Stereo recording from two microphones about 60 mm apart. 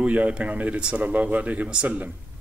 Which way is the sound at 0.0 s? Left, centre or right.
Right.